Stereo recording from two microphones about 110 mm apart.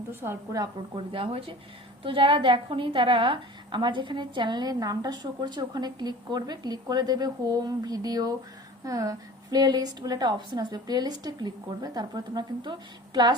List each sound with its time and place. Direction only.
0.1 s a woman's voice: 20° right (ahead or behind)
0.9 s a woman's voice: 55° right (ahead or behind)